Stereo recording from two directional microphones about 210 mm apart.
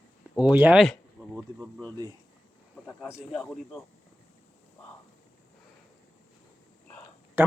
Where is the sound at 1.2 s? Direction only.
10° right (ahead or behind).